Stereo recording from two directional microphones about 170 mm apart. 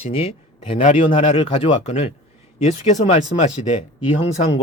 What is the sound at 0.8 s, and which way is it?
Speech, 45° left (ahead or behind).